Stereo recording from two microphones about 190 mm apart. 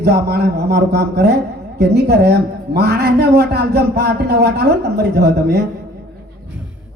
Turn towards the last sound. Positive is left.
turn(degrees=-60)  # may be behind; listen again after turning